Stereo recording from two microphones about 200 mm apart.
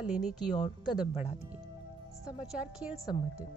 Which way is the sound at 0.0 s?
Centre (ahead or behind).